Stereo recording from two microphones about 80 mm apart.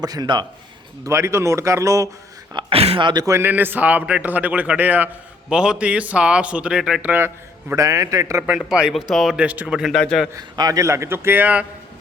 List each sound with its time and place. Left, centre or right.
0.0 s a man's voice: right
1.0 s a man's voice: right
2.5 s speech: right
3.4 s a man's voice: right
5.5 s a man's voice: centre
7.0 s a man's voice: right
7.8 s a man's voice: right
8.4 s a man's voice: centre
9.4 s a man's voice: centre
9.9 s a man's voice: centre
10.3 s a man's voice: right